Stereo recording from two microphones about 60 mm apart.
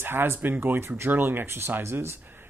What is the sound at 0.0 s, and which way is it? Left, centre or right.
Speech, right.